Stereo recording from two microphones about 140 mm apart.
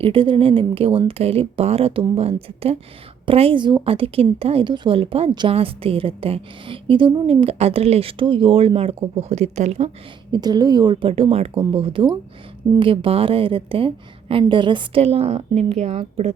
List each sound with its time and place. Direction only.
0.0 s a woman's voice: 40° right (ahead or behind)
10.3 s a woman's voice: 30° right (ahead or behind); by 16.3 s 50° right (ahead or behind)